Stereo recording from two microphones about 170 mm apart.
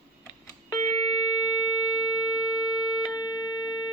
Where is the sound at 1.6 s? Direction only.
25° left (ahead or behind).